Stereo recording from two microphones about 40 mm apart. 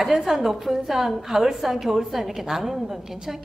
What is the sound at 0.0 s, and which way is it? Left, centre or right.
A woman's voice, centre.